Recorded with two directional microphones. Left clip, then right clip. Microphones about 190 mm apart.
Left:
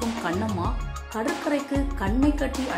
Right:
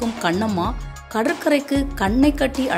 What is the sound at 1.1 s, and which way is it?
Speech, 30° right (ahead or behind).